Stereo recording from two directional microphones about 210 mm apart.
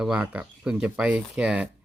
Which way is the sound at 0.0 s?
5° right (ahead or behind).